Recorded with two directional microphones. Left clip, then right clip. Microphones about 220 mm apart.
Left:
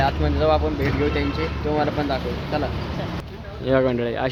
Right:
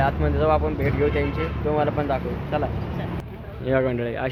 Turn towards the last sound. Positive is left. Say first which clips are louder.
# left 3 dB
turn(degrees=25)  # may be behind; listen again after turning